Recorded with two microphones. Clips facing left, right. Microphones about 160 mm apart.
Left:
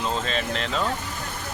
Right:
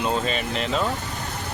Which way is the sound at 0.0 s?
10° right (ahead or behind).